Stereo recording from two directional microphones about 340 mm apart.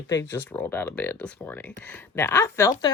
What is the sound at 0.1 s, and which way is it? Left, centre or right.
A woman's voice, centre.